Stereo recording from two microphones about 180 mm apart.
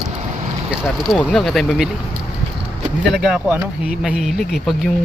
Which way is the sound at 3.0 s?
Centre (ahead or behind).